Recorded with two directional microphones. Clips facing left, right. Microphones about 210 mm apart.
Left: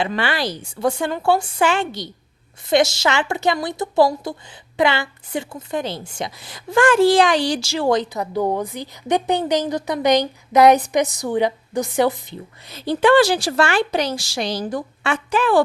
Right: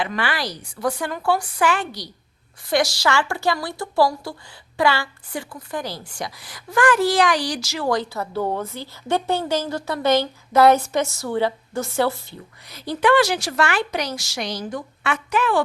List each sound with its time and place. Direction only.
0.0 s a woman's voice: 25° left (ahead or behind)